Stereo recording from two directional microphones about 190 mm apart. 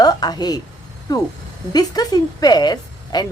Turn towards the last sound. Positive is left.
turn(degrees=20)  # may be behind; listen again after turning